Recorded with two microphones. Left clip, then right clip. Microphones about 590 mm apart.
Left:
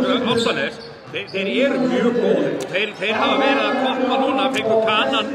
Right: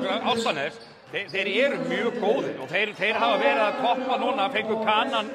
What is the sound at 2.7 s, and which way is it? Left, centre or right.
A man's voice, right.